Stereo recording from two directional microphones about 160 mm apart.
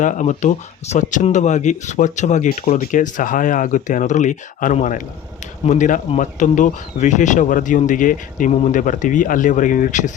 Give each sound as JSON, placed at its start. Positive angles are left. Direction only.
{"t": 0.0, "sound": "speech", "side_deg": 50}